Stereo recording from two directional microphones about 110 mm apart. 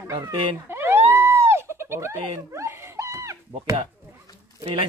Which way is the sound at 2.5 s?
25° right (ahead or behind).